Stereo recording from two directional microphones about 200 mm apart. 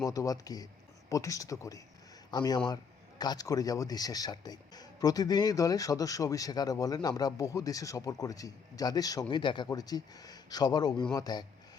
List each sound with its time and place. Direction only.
0.0 s speech: 15° left (ahead or behind)